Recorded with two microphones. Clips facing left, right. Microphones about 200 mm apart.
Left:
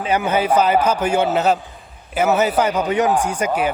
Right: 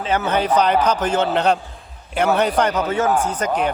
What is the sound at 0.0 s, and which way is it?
A man's voice, 10° left (ahead or behind).